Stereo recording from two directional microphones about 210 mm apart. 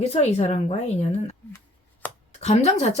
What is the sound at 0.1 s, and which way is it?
Speech, 30° left (ahead or behind).